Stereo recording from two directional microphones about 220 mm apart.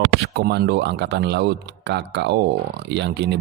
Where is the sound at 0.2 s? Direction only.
50° right (ahead or behind).